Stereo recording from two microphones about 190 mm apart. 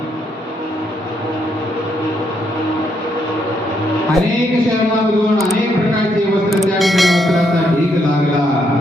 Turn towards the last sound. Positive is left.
turn(degrees=0)  # may be behind; listen again after turning